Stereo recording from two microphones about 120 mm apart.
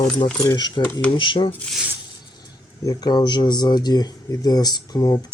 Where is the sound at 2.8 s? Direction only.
35° left (ahead or behind).